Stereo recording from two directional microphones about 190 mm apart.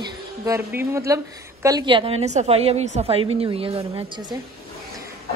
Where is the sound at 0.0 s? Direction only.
15° right (ahead or behind).